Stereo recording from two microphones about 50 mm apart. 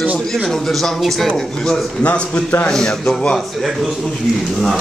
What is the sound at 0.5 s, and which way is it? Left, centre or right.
Speech, centre.